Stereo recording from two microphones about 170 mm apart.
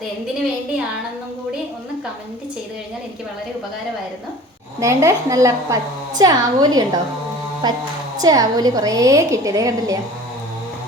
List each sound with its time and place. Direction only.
4.8 s a woman's voice: 15° right (ahead or behind)